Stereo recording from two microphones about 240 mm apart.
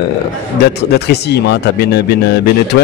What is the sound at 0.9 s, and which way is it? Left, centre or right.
Speech, left.